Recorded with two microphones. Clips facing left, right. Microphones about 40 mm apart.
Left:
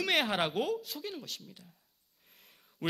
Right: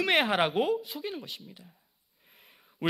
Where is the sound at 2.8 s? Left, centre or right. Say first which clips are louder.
Right 4 dB; right.